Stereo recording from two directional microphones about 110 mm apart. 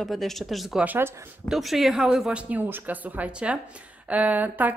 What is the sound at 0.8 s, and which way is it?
Speech, 20° right (ahead or behind).